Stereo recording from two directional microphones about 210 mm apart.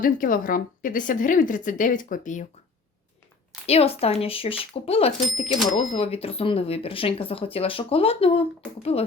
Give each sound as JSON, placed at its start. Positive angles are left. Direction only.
{"t": 0.0, "sound": "a woman's voice", "side_deg": 40}
{"t": 3.7, "sound": "speech", "side_deg": 30}